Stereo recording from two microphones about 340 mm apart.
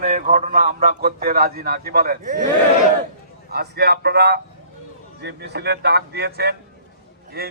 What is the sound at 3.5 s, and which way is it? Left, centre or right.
A man's voice, right.